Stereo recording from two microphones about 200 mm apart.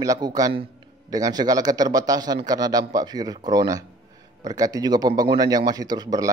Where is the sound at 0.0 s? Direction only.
20° right (ahead or behind).